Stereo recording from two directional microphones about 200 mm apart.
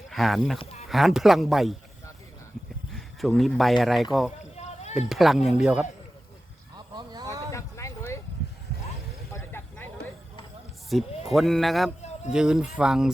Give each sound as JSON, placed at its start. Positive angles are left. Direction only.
{"t": 0.1, "sound": "speech", "side_deg": 0}
{"t": 0.6, "sound": "a sound", "side_deg": 30}
{"t": 0.9, "sound": "speech", "side_deg": 0}
{"t": 2.9, "sound": "speech", "side_deg": 0}
{"t": 4.5, "sound": "rowboat", "side_deg": 35}
{"t": 4.9, "sound": "speech", "side_deg": 0}
{"t": 6.7, "sound": "vehicle", "side_deg": -20}
{"t": 7.5, "sound": "a sound", "side_deg": 15}
{"t": 9.3, "sound": "vehicle", "side_deg": 10}
{"t": 10.8, "sound": "speech", "side_deg": 0}